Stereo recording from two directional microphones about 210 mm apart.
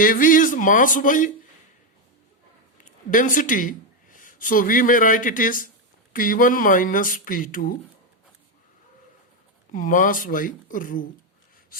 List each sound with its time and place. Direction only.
0.0 s speech: 40° left (ahead or behind)
2.8 s speech: 40° left (ahead or behind)
9.7 s speech: 40° left (ahead or behind)